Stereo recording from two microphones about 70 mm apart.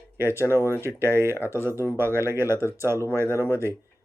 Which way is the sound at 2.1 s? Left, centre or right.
Right.